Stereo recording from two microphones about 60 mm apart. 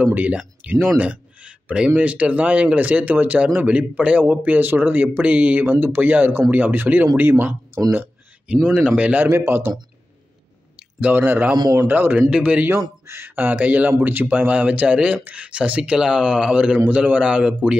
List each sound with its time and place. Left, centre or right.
0.0 s speech: right
8.6 s speech: right
9.3 s speech: right
11.1 s speech: right
12.3 s speech: right
12.7 s speech: right
13.4 s speech: right
16.7 s speech: right
17.0 s speech: centre